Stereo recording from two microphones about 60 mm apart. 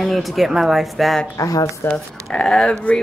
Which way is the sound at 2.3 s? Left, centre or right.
Left.